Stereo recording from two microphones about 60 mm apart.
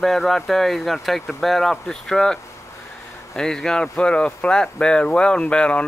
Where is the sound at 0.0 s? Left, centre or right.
Centre.